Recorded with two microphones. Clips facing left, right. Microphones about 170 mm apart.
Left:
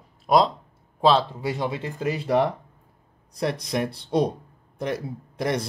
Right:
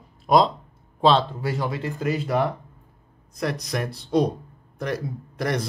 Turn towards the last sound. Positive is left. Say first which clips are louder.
# even
turn(degrees=25)  # may be behind; listen again after turning